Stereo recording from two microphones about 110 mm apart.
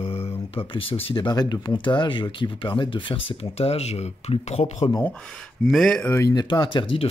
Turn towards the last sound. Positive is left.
turn(degrees=50)  # may be behind; listen again after turning